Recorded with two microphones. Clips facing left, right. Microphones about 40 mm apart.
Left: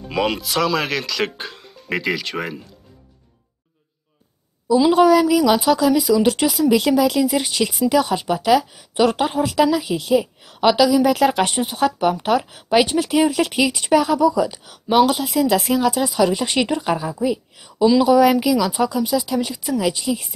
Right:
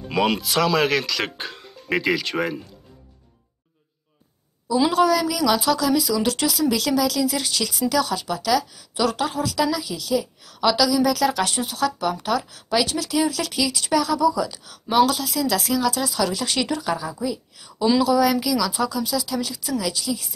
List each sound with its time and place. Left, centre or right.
0.1 s speech: centre
4.9 s speech: centre
6.6 s speech: left